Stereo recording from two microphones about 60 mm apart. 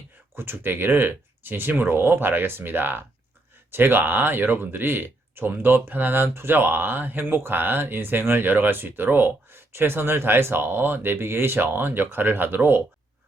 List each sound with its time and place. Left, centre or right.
0.3 s speech: right